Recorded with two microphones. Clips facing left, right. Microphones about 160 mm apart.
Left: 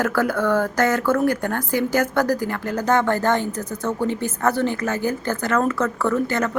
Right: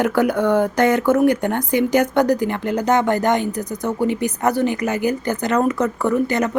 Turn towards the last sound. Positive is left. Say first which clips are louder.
# right 3 dB
turn(degrees=-15)  # may be behind; listen again after turning